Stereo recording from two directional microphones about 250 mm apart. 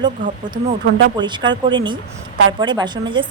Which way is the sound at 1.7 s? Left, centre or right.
Centre.